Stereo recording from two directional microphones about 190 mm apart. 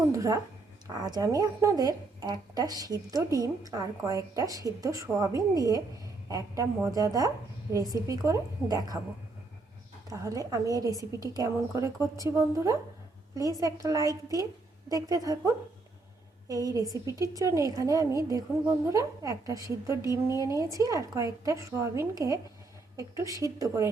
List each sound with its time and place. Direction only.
0.1 s a sound: 15° right (ahead or behind)
0.9 s a woman's voice: 20° right (ahead or behind)
10.1 s a woman's voice: 20° right (ahead or behind)